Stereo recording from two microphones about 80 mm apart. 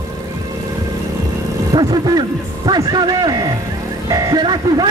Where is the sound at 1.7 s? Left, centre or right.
Right.